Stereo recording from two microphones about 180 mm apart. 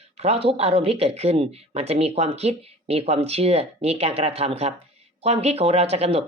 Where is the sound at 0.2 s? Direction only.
35° right (ahead or behind).